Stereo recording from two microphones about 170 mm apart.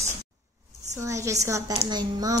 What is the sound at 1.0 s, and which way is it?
A woman's voice, 15° right (ahead or behind).